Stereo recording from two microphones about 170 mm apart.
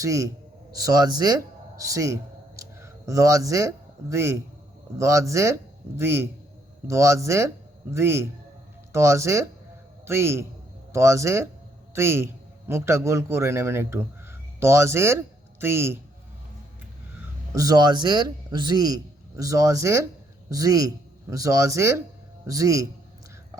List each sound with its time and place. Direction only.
0.0 s a man's voice: 20° right (ahead or behind)
17.5 s speech: 20° right (ahead or behind)